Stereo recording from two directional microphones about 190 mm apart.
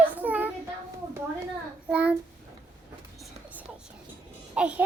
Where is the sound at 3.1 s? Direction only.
5° right (ahead or behind).